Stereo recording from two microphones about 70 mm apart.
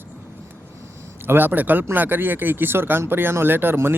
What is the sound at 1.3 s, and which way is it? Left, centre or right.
Speech, right.